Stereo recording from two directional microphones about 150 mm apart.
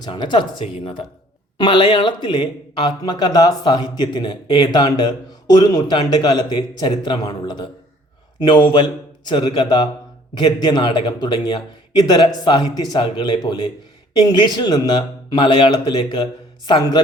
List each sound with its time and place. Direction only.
0.0 s a man's voice: 30° left (ahead or behind)